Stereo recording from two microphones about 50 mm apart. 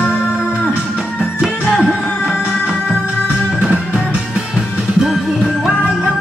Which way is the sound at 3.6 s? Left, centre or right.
Centre.